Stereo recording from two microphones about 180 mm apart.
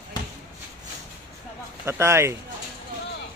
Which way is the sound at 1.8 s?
15° right (ahead or behind).